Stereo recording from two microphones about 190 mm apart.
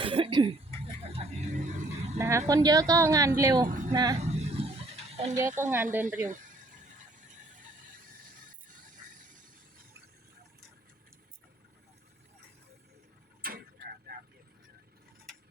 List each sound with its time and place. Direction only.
0.0 s cough: 25° right (ahead or behind)
1.0 s a sound: 30° right (ahead or behind)
2.1 s a woman's voice: 15° right (ahead or behind)
3.7 s a sound: 40° right (ahead or behind)
3.9 s a woman's voice: 20° right (ahead or behind)
4.2 s a sound: 35° right (ahead or behind)
5.5 s speech: 40° right (ahead or behind)
5.7 s speech: 10° right (ahead or behind)
6.2 s a sound: 40° right (ahead or behind)
13.4 s tick-tock: 50° right (ahead or behind)
14.1 s vehicle: 55° right (ahead or behind)
15.3 s mechanisms: centre (ahead or behind)